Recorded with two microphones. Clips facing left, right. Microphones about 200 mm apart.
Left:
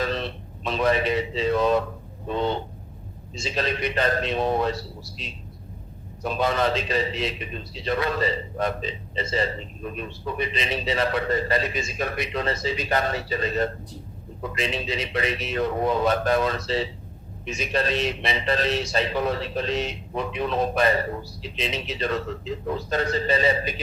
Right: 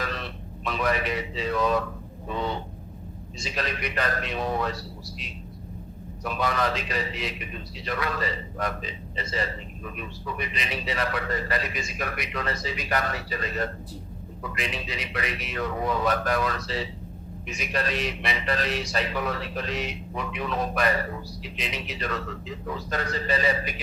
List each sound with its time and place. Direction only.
0.0 s a man's voice: 25° left (ahead or behind)